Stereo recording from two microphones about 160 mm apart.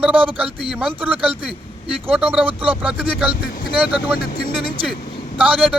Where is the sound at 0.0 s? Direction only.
10° right (ahead or behind).